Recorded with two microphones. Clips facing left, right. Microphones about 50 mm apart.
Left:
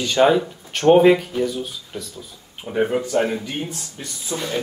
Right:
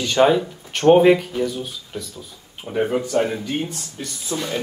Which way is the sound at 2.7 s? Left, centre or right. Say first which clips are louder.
Even; centre.